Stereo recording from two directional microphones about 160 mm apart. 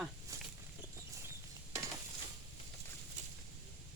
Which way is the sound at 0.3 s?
20° right (ahead or behind).